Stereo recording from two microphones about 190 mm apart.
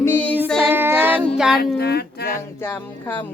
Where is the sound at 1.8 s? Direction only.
55° left (ahead or behind).